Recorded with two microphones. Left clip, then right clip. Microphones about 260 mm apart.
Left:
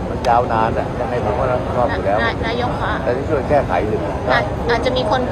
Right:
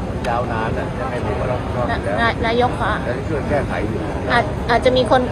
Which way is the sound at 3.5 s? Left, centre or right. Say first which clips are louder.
Left 5 dB; left.